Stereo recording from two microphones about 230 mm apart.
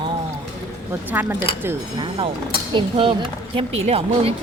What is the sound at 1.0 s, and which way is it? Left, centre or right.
Speech, centre.